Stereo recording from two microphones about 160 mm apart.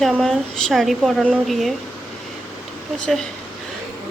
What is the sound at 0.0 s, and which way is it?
Speech, centre (ahead or behind).